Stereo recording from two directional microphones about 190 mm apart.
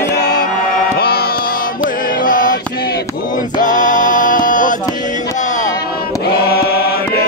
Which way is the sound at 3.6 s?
40° left (ahead or behind).